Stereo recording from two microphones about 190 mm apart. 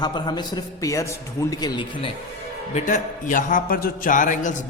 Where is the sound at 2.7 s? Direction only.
40° left (ahead or behind).